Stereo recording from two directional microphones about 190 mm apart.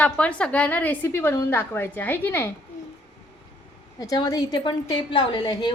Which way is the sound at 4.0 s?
20° left (ahead or behind).